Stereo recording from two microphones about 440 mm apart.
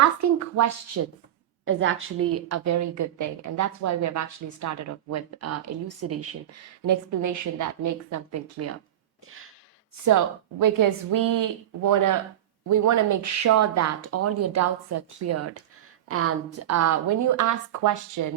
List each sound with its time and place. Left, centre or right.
0.0 s a woman's voice: right
1.6 s a woman's voice: right
10.1 s a woman's voice: right